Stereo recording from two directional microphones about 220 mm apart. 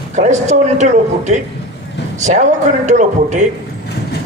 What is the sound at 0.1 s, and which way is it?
Speech, 35° right (ahead or behind).